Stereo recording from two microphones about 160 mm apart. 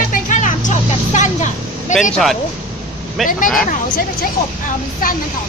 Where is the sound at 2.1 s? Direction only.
Centre (ahead or behind).